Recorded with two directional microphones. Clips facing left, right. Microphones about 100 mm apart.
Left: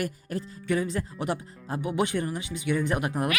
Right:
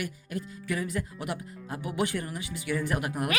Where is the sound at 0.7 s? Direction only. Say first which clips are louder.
Left 5 dB; 25° left (ahead or behind).